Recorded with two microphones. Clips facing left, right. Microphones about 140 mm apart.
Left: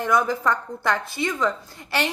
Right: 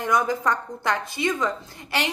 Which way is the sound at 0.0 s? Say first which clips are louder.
Left 1 dB; 20° right (ahead or behind).